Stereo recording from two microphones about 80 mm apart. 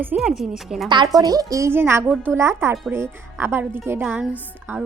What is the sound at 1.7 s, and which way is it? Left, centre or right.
A woman's voice, right.